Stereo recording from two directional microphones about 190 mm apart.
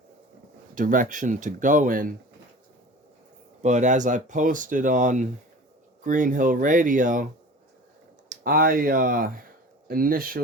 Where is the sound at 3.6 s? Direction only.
40° right (ahead or behind).